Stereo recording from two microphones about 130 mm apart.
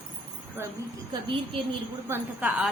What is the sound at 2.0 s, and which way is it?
Speech, 15° right (ahead or behind).